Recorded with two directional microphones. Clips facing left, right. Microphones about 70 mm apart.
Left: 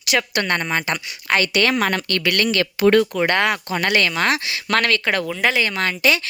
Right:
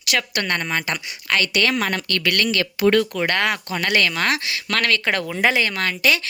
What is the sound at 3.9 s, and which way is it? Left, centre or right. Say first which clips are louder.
Speech: left 1 dB; centre.